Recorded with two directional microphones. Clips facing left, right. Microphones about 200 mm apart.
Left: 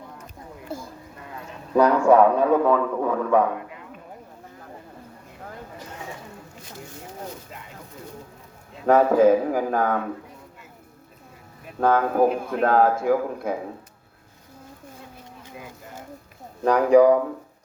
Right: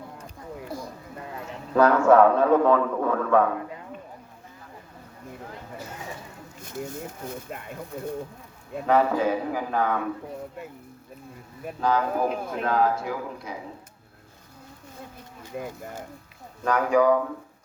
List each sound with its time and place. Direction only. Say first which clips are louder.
0.7 s a sound: left 2 dB; 25° left (ahead or behind)
1.7 s a man's voice: left 1 dB; 15° left (ahead or behind)
6.6 s speech: right 10 dB; 50° right (ahead or behind)
8.9 s a man's voice: left 6 dB; 45° left (ahead or behind)
11.8 s a man's voice: left 5 dB; 55° left (ahead or behind)
16.6 s speech: left 5 dB; 35° left (ahead or behind)